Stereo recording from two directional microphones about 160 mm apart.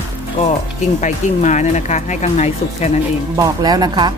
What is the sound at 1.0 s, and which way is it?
Speech, 50° left (ahead or behind).